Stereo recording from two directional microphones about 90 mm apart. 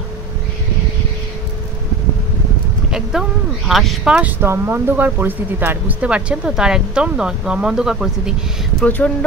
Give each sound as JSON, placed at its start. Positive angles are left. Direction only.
{"t": 2.9, "sound": "speech", "side_deg": -5}
{"t": 4.2, "sound": "speech", "side_deg": -20}
{"t": 8.8, "sound": "speech", "side_deg": 20}